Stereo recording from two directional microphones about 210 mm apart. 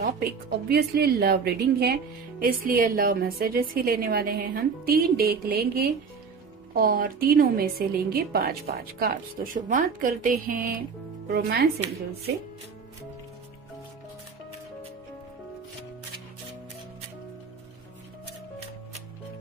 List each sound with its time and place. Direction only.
0.0 s a woman's voice: 45° right (ahead or behind)